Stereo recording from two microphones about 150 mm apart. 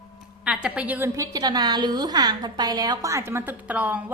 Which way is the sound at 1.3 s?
25° right (ahead or behind).